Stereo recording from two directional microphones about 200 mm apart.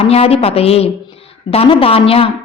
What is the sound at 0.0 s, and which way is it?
A woman's voice, 30° left (ahead or behind).